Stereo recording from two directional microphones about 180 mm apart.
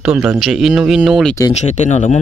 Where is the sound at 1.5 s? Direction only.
40° left (ahead or behind).